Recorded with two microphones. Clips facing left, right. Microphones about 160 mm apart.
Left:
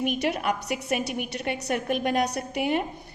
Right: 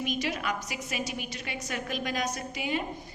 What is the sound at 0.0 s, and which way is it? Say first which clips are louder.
A woman's voice: left 5 dB; 60° left (ahead or behind).